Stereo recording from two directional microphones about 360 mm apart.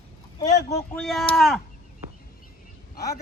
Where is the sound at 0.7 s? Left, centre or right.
Centre.